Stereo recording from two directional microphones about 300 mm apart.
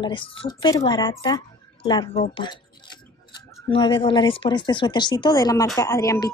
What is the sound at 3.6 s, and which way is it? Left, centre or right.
Speech, centre.